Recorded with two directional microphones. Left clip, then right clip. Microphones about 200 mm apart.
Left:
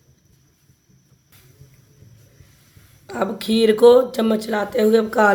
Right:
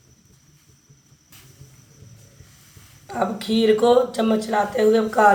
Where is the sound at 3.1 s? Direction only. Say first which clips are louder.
Left 1 dB; 50° left (ahead or behind).